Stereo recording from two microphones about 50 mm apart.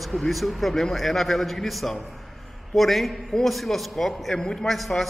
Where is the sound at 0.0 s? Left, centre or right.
Centre.